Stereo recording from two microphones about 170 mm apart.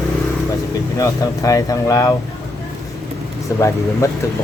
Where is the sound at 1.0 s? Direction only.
20° left (ahead or behind).